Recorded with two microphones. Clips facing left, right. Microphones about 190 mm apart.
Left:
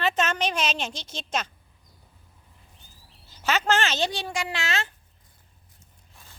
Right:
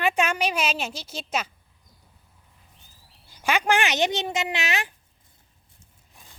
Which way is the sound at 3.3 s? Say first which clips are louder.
Right 1 dB; 15° right (ahead or behind).